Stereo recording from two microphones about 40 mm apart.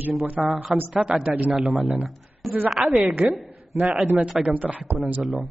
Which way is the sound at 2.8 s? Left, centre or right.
Right.